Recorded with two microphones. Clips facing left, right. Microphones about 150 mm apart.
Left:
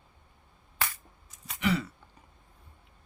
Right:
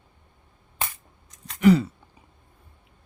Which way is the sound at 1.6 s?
40° right (ahead or behind).